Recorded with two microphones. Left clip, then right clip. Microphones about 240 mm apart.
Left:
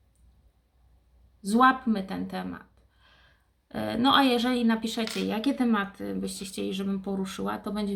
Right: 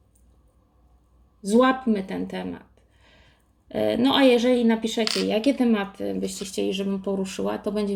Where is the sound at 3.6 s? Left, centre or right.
Left.